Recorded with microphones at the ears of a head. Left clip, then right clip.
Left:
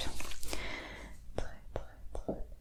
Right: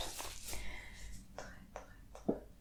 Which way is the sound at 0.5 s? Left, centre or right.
Left.